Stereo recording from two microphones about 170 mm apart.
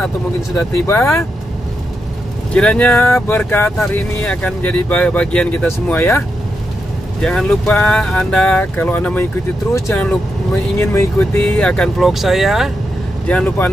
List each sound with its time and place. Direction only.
0.7 s speech: 15° left (ahead or behind)
2.5 s speech: 5° left (ahead or behind)